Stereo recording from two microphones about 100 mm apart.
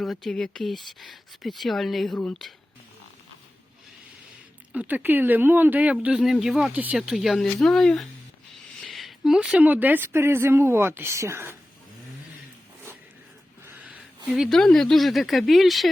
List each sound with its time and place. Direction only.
0.0 s speech: centre (ahead or behind)
4.7 s speech: 15° right (ahead or behind); by 8.0 s 5° left (ahead or behind)
8.8 s a sound: centre (ahead or behind)
9.6 s speech: 15° right (ahead or behind)
13.7 s a sound: 15° right (ahead or behind)
14.3 s speech: 5° right (ahead or behind)
14.5 s speech: 5° left (ahead or behind)